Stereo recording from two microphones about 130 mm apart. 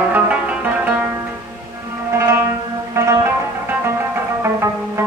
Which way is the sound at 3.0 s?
20° right (ahead or behind).